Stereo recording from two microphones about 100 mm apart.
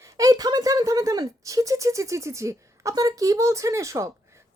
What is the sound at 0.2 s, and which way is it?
A woman's voice, 40° right (ahead or behind).